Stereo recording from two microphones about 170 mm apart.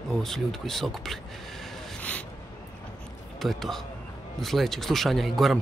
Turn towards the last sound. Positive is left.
turn(degrees=0)  # may be behind; listen again after turning